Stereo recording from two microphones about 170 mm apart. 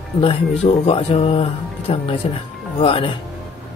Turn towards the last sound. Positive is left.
turn(degrees=35)  # may be behind; listen again after turning